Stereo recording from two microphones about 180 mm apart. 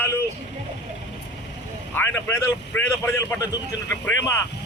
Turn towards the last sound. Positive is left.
turn(degrees=15)  # may be behind; listen again after turning